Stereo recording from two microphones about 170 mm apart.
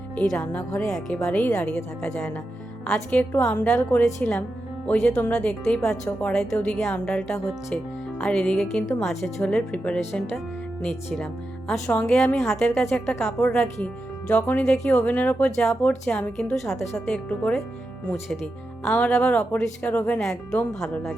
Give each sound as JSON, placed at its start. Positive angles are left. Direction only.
{"t": 0.2, "sound": "speech", "side_deg": 5}
{"t": 11.7, "sound": "speech", "side_deg": 5}
{"t": 12.5, "sound": "speech", "side_deg": 5}
{"t": 20.8, "sound": "speech", "side_deg": 5}